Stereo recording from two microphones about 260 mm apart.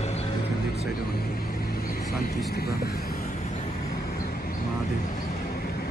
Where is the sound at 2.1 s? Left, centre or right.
Left.